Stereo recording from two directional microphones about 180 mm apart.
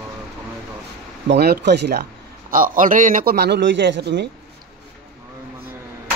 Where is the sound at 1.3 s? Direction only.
65° right (ahead or behind).